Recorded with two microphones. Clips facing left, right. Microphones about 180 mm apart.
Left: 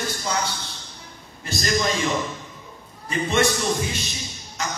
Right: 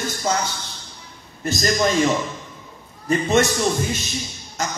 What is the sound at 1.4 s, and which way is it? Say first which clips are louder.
Speech: right 4 dB; 45° right (ahead or behind).